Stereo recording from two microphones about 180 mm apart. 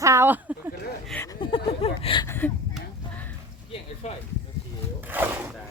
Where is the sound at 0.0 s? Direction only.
15° right (ahead or behind).